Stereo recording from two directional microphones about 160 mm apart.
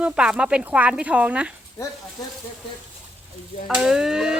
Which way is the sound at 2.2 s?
25° left (ahead or behind).